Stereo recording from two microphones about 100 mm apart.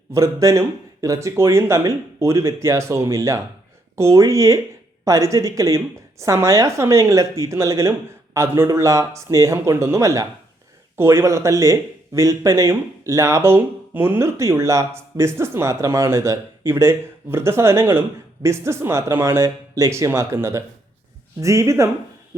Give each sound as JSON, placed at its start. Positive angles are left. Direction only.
{"t": 0.1, "sound": "a woman's voice", "side_deg": -30}